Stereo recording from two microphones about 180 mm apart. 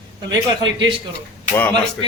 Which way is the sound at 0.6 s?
25° right (ahead or behind).